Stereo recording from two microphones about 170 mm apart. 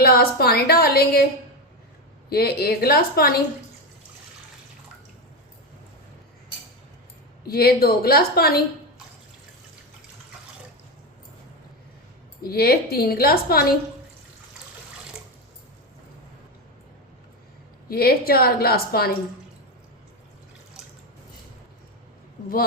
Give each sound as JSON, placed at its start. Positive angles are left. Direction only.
{"t": 0.0, "sound": "a woman's voice", "side_deg": 65}
{"t": 2.3, "sound": "a woman's voice", "side_deg": 65}
{"t": 7.4, "sound": "a woman's voice", "side_deg": 65}
{"t": 12.4, "sound": "a woman's voice", "side_deg": 60}
{"t": 17.8, "sound": "a woman's voice", "side_deg": 65}